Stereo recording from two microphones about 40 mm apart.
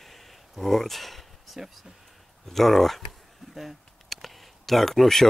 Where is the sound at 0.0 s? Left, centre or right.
Centre.